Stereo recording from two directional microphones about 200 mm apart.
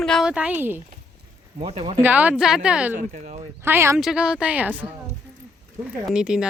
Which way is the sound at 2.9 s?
40° right (ahead or behind).